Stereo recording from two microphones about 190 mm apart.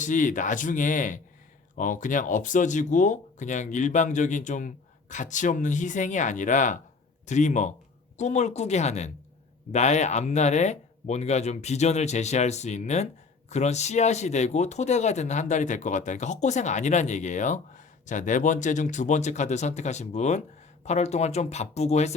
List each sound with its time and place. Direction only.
0.0 s speech: 40° left (ahead or behind)